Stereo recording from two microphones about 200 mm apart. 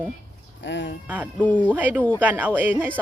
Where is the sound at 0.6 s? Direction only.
65° left (ahead or behind).